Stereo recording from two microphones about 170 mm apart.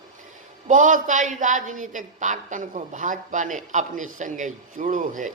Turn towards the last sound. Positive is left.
turn(degrees=-50)  # may be behind; listen again after turning